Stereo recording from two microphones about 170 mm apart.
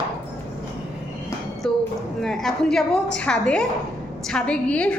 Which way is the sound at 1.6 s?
5° left (ahead or behind).